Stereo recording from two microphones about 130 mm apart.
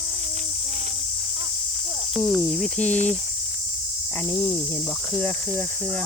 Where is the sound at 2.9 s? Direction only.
75° right (ahead or behind).